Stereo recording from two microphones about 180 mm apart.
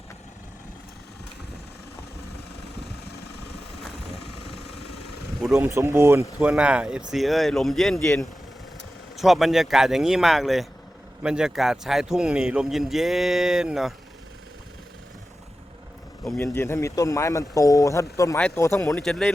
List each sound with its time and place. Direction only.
2.8 s vehicle: 65° left (ahead or behind)
5.5 s speech: 15° right (ahead or behind)
16.2 s speech: 5° left (ahead or behind)
16.6 s speech: 15° left (ahead or behind)
18.3 s speech: 5° left (ahead or behind)